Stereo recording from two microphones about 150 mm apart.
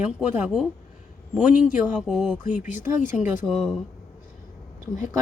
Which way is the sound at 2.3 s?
55° left (ahead or behind).